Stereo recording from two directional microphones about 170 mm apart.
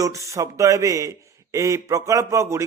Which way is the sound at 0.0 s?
20° right (ahead or behind).